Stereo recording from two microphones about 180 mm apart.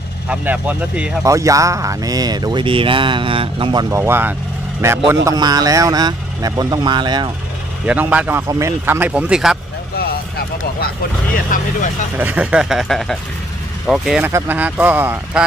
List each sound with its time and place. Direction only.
0.3 s speech: 10° right (ahead or behind)
1.2 s speech: 20° right (ahead or behind)
3.9 s speech: 15° right (ahead or behind)
7.8 s speech: 10° right (ahead or behind)
9.9 s vehicle: 60° left (ahead or behind)
11.5 s speech: 50° left (ahead or behind)
12.2 s speech: 10° right (ahead or behind)